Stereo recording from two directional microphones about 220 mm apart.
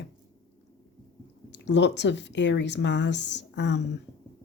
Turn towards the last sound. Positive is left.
turn(degrees=50)  # may be behind; listen again after turning